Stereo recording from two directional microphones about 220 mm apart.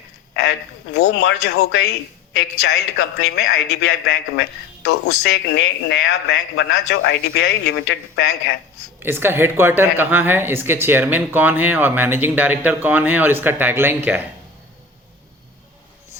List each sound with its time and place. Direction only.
0.9 s speech: 50° left (ahead or behind)
9.0 s a woman's voice: 10° right (ahead or behind)